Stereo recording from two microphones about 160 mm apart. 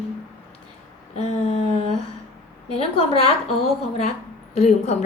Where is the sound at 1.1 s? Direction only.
40° left (ahead or behind).